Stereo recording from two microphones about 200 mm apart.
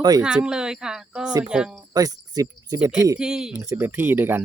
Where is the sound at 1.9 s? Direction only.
20° right (ahead or behind).